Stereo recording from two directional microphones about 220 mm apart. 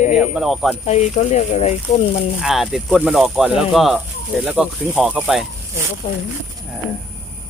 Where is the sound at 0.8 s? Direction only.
30° left (ahead or behind).